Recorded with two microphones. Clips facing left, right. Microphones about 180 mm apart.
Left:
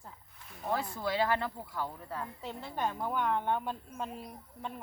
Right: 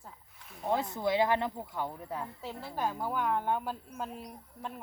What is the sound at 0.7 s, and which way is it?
Speech, 20° right (ahead or behind).